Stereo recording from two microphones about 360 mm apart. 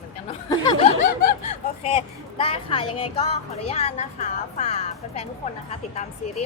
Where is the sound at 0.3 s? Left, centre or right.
Centre.